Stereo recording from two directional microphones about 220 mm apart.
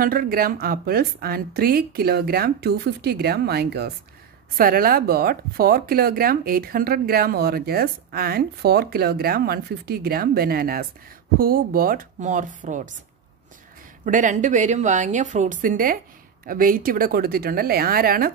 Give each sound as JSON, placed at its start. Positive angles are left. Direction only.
{"t": 0.0, "sound": "a woman's voice", "side_deg": -40}
{"t": 14.0, "sound": "a woman's voice", "side_deg": -35}